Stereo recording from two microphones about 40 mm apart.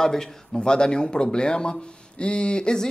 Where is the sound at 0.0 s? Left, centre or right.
Centre.